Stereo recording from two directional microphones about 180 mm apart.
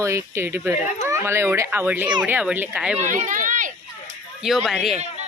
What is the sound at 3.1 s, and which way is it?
Speech, 45° right (ahead or behind).